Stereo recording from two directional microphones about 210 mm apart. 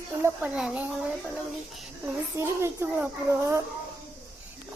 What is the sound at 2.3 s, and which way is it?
A woman's voice, 10° right (ahead or behind).